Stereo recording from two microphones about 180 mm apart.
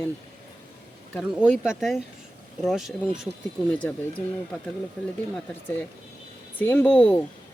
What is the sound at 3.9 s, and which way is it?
Speech, 15° left (ahead or behind).